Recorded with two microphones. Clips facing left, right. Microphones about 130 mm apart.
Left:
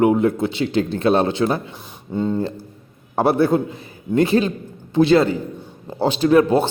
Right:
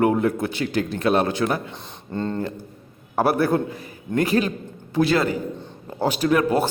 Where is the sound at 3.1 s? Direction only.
25° left (ahead or behind).